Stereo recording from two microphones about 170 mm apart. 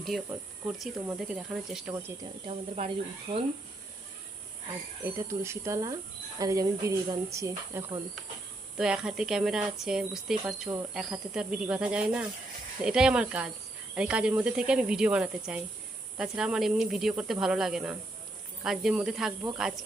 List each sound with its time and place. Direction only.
1.0 s speech: 5° right (ahead or behind)
2.5 s speech: 40° right (ahead or behind)
5.0 s speech: 15° right (ahead or behind)
8.8 s speech: 5° right (ahead or behind)